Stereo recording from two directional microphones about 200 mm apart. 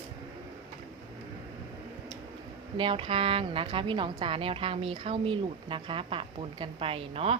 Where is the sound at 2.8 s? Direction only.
25° right (ahead or behind).